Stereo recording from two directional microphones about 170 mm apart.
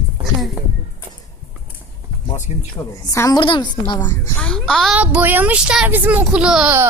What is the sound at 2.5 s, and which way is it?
Speech, 40° left (ahead or behind).